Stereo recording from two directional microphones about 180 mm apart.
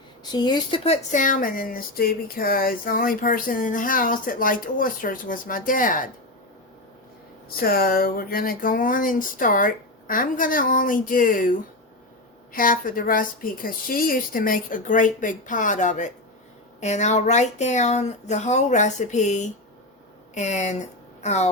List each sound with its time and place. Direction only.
0.3 s speech: 25° left (ahead or behind)
0.9 s speech: 45° left (ahead or behind)
7.5 s speech: 55° left (ahead or behind)
12.5 s speech: 50° left (ahead or behind)